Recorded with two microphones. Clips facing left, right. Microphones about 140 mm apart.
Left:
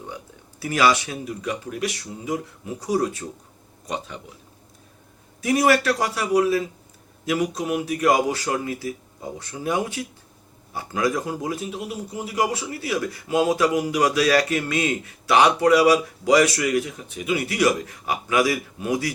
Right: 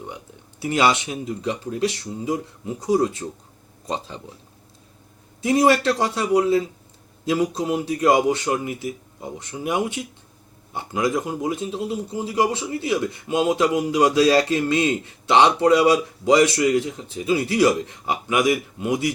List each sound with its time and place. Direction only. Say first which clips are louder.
0.6 s a man's voice: even; 25° right (ahead or behind)
5.4 s a man's voice: right 2 dB; 25° right (ahead or behind)